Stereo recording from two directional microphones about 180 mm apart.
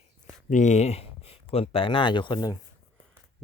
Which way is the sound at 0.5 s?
40° left (ahead or behind).